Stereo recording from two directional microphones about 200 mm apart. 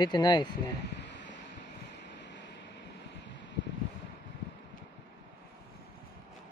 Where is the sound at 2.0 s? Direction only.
60° left (ahead or behind).